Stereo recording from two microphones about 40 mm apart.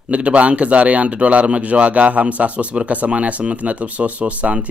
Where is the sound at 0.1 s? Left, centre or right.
Right.